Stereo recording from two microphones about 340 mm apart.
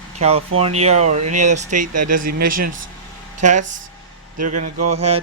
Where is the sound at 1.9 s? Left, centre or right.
Right.